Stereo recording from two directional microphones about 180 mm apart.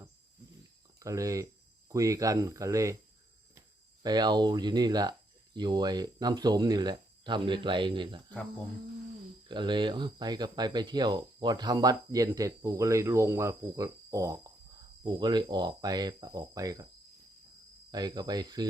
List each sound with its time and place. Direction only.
0.9 s speech: 20° right (ahead or behind)
4.0 s speech: 25° right (ahead or behind)
9.5 s speech: 25° right (ahead or behind)
17.9 s speech: 20° right (ahead or behind)